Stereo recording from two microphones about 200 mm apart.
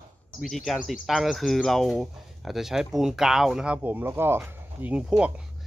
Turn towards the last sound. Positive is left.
turn(degrees=-5)  # may be behind; listen again after turning